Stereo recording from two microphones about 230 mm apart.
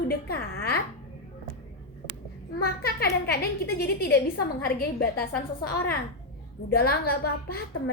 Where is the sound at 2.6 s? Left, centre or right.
Left.